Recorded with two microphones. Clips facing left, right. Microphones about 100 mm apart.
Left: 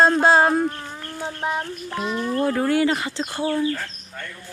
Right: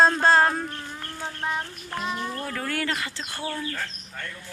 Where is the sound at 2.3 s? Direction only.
25° left (ahead or behind).